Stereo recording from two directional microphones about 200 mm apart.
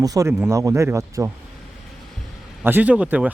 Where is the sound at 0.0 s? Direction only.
15° right (ahead or behind).